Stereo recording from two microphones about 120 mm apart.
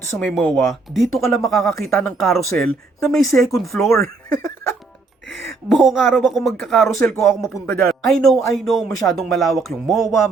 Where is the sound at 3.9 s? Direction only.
25° left (ahead or behind).